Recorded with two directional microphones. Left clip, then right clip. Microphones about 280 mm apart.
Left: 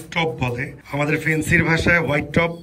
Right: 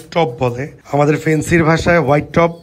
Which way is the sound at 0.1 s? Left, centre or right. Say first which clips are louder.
Right 7 dB; centre.